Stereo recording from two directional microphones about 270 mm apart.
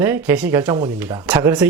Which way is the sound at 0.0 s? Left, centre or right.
Centre.